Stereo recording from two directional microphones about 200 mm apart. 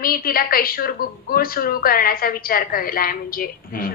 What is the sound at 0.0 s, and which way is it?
A woman's voice, 45° left (ahead or behind).